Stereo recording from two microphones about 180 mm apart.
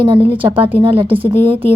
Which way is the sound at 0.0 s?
30° right (ahead or behind).